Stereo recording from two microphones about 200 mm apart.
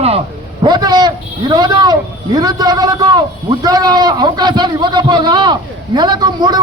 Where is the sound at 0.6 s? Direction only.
20° right (ahead or behind).